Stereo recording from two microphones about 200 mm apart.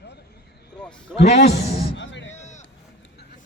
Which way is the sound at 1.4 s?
60° left (ahead or behind).